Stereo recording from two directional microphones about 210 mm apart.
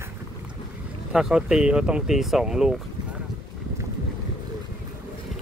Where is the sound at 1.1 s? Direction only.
Centre (ahead or behind).